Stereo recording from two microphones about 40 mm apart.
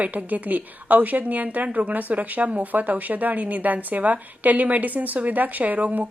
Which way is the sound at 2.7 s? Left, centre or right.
Right.